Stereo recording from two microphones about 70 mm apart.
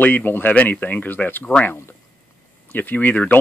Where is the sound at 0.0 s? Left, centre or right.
Left.